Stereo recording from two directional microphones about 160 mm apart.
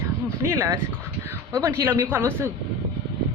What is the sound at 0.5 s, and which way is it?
A woman's voice, 20° right (ahead or behind).